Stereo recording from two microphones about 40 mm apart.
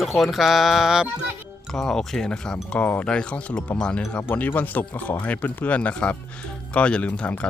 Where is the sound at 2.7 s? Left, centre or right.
Left.